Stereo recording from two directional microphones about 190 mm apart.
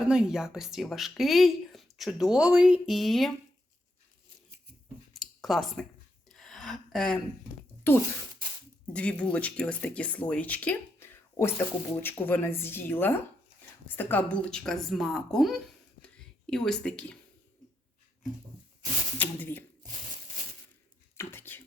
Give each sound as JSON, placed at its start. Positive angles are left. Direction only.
{"t": 0.1, "sound": "speech", "side_deg": -5}
{"t": 5.2, "sound": "a sound", "side_deg": 0}
{"t": 8.9, "sound": "speech", "side_deg": 5}
{"t": 19.2, "sound": "speech", "side_deg": 10}
{"t": 21.2, "sound": "cutlery", "side_deg": 10}